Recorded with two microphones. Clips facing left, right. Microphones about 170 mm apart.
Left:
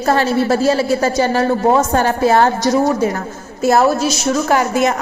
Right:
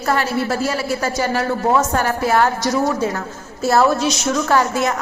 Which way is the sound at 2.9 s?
15° left (ahead or behind).